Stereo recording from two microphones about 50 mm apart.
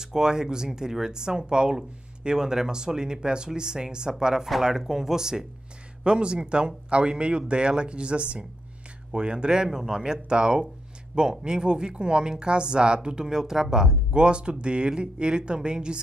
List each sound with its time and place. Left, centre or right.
0.0 s a woman's voice: centre